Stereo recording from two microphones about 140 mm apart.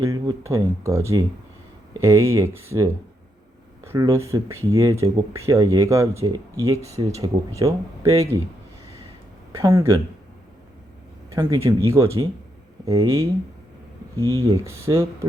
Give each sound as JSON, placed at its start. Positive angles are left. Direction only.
{"t": 0.0, "sound": "speech", "side_deg": -25}
{"t": 9.5, "sound": "speech", "side_deg": -20}
{"t": 11.5, "sound": "speech", "side_deg": -20}